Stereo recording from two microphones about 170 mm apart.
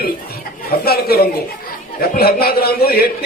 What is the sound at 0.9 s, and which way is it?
A man's voice, 65° left (ahead or behind).